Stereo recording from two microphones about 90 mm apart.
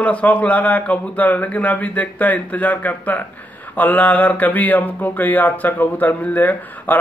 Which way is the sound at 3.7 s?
20° left (ahead or behind).